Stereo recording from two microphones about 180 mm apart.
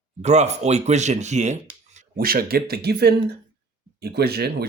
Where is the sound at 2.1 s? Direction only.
55° right (ahead or behind).